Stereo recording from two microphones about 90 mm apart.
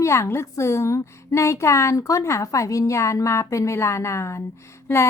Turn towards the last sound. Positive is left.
turn(degrees=30)  # may be behind; listen again after turning